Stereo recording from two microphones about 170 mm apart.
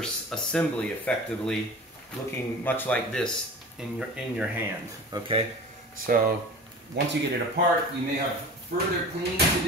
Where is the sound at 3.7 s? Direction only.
5° right (ahead or behind).